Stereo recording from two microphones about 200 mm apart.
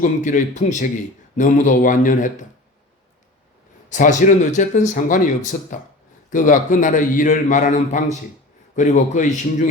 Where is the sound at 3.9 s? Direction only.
40° left (ahead or behind).